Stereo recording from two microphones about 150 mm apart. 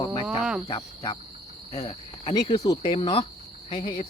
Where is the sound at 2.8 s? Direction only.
40° left (ahead or behind).